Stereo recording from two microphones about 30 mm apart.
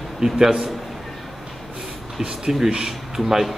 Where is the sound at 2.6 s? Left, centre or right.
Right.